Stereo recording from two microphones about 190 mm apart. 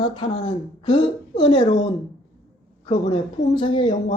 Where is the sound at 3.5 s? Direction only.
25° left (ahead or behind).